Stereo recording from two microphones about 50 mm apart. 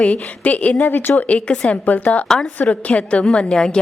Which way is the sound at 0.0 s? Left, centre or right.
Left.